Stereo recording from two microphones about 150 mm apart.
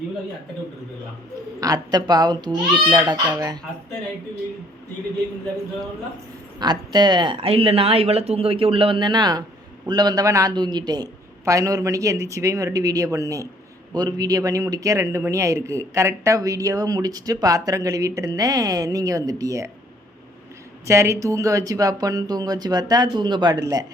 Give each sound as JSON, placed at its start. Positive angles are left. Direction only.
{"t": 1.6, "sound": "a man's voice", "side_deg": -25}
{"t": 6.6, "sound": "a man's voice", "side_deg": -30}
{"t": 20.8, "sound": "a man's voice", "side_deg": -20}